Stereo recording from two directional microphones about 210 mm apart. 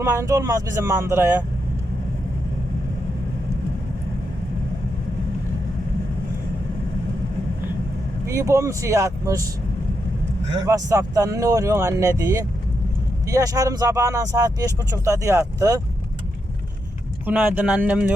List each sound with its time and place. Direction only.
0.0 s speech: 15° right (ahead or behind)
8.3 s speech: 15° right (ahead or behind)
10.7 s speech: 15° right (ahead or behind)
17.2 s speech: 5° right (ahead or behind)